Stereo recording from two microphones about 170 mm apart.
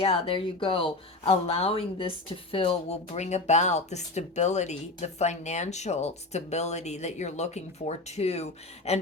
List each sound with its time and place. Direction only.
0.0 s speech: 35° left (ahead or behind)